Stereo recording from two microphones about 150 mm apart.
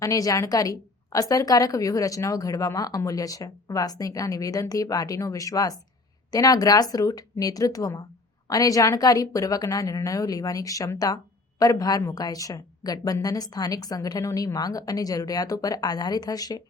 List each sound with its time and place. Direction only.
0.0 s a woman's voice: 20° left (ahead or behind)